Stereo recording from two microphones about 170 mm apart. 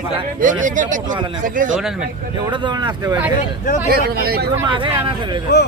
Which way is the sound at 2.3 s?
25° right (ahead or behind).